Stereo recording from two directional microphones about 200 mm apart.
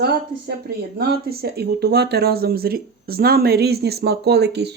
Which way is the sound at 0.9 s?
50° right (ahead or behind).